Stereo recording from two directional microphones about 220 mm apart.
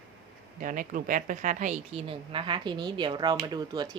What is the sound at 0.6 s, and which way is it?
A woman's voice, 35° right (ahead or behind).